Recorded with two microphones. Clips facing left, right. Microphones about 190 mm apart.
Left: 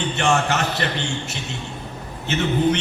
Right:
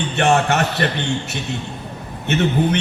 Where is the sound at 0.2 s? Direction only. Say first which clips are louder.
Right 5 dB; 60° right (ahead or behind).